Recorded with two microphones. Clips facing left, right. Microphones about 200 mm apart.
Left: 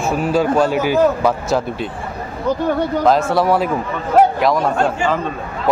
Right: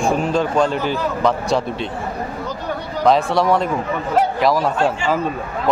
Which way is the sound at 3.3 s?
5° left (ahead or behind).